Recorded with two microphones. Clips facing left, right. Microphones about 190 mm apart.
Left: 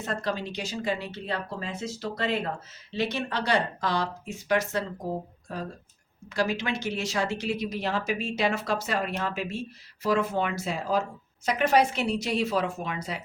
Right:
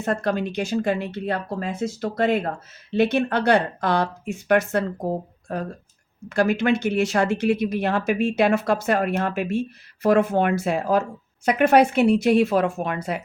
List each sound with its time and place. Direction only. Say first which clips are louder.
0.0 s speech: right 7 dB; 55° right (ahead or behind)